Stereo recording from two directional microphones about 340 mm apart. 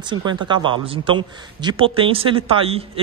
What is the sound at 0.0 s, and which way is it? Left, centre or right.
A man's voice, centre.